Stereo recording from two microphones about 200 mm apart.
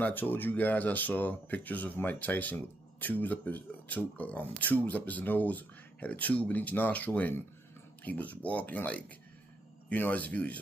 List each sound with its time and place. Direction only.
0.0 s speech: 10° left (ahead or behind)